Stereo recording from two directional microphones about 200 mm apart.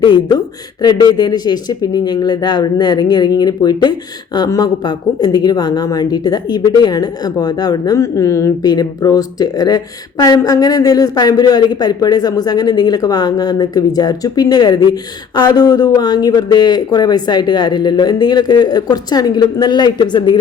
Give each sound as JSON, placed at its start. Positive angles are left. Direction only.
{"t": 0.0, "sound": "a woman's voice", "side_deg": 20}